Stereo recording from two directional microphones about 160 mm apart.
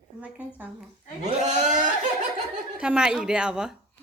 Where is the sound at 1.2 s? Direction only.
45° right (ahead or behind).